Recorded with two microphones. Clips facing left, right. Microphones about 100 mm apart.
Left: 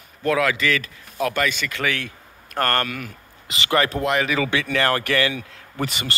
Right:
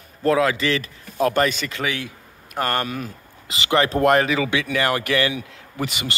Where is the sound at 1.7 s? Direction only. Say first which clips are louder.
Left 1 dB; 15° right (ahead or behind).